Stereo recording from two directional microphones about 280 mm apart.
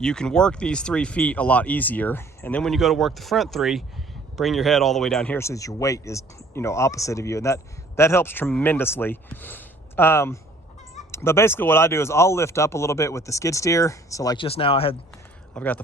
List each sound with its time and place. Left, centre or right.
0.0 s speech: centre
15.5 s speech: centre